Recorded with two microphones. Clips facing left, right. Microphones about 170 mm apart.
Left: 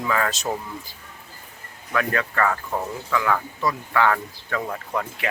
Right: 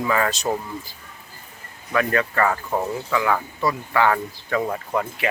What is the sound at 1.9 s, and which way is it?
Speech, 5° right (ahead or behind).